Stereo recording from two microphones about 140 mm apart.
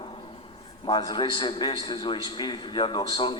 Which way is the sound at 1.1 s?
35° left (ahead or behind).